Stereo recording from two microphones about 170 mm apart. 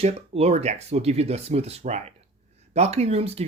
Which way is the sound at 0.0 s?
35° right (ahead or behind).